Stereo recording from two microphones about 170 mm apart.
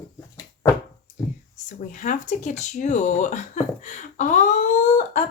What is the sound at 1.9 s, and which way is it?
A woman's voice, 50° left (ahead or behind).